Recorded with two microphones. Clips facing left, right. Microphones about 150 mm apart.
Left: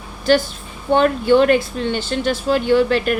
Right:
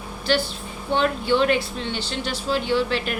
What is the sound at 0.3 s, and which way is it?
Speech, 45° left (ahead or behind).